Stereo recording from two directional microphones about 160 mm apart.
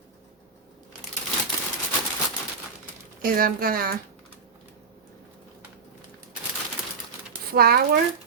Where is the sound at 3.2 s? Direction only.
65° right (ahead or behind).